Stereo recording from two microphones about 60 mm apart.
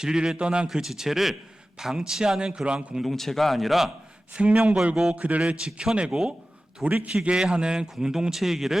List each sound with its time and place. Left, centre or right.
0.0 s a man's voice: centre
3.1 s speech: centre
4.4 s a man's voice: centre
5.1 s a man's voice: right
6.8 s a man's voice: right
7.1 s a man's voice: centre